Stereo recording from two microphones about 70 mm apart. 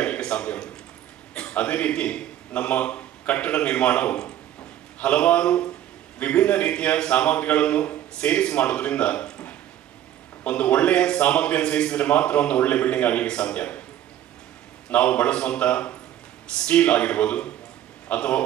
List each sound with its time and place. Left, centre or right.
0.0 s a sound: centre
1.3 s a man's voice: centre
14.9 s a man's voice: left